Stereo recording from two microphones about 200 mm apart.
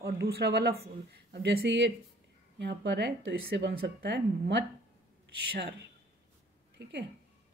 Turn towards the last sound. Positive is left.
turn(degrees=-60)  # may be behind; listen again after turning